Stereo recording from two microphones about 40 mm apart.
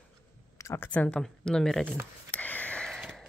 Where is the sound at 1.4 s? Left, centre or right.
Centre.